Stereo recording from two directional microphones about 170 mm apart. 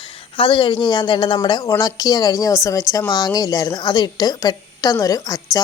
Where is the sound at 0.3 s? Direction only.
30° left (ahead or behind).